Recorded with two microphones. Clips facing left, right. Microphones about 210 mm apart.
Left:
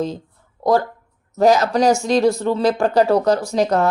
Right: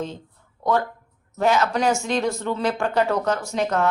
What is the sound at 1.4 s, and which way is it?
Speech, 40° left (ahead or behind).